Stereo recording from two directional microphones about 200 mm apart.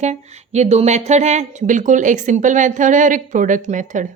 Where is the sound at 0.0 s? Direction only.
35° right (ahead or behind).